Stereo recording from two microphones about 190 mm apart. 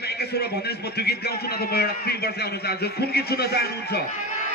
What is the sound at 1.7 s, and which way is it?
A man's voice, 55° left (ahead or behind).